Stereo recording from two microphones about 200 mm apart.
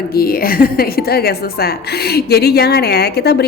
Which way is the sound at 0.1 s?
50° left (ahead or behind).